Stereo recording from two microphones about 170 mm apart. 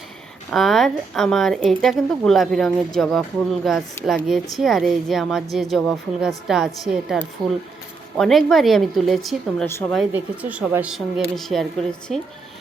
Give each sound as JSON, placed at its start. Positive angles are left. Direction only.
{"t": 0.5, "sound": "speech", "side_deg": 0}
{"t": 8.2, "sound": "speech", "side_deg": 0}
{"t": 9.6, "sound": "speech", "side_deg": 15}
{"t": 10.1, "sound": "speech", "side_deg": -10}